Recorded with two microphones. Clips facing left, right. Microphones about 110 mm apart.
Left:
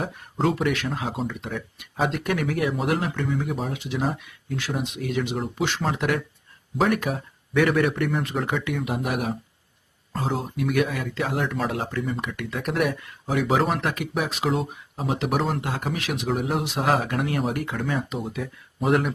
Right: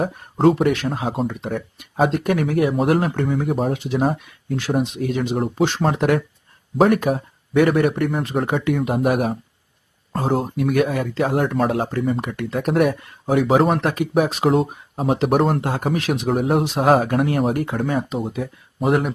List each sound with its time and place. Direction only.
0.0 s speech: 40° right (ahead or behind)
8.5 s speech: 45° right (ahead or behind)
13.8 s speech: 30° right (ahead or behind)
18.9 s speech: 20° right (ahead or behind)